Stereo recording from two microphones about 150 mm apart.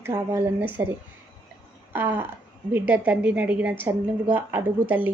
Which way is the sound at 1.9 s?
15° right (ahead or behind).